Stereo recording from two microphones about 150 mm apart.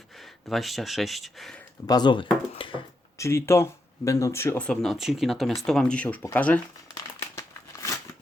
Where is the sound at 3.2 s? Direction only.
15° left (ahead or behind).